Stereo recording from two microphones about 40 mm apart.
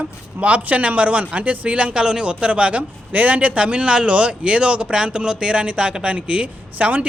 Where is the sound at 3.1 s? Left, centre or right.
Right.